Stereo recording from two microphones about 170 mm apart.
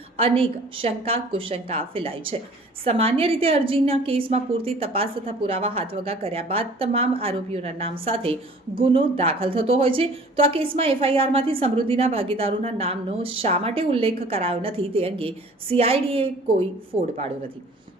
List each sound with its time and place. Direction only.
0.2 s a woman's voice: 35° right (ahead or behind)